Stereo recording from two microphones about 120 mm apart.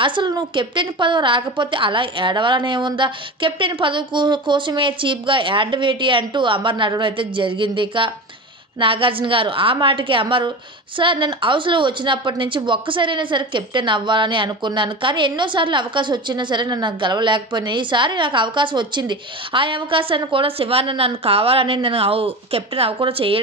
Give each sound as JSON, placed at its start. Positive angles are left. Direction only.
{"t": 0.0, "sound": "a woman's voice", "side_deg": -40}